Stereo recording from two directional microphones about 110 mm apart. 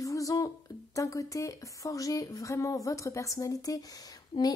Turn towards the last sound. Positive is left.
turn(degrees=35)  # may be behind; listen again after turning